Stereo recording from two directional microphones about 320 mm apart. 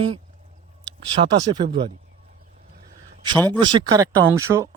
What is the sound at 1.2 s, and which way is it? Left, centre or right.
Speech, right.